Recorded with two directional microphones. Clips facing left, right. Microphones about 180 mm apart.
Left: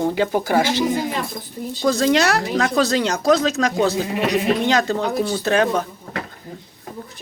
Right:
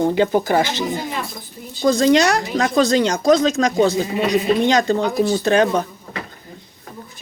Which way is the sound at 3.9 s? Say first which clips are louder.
Right 2 dB; 70° left (ahead or behind).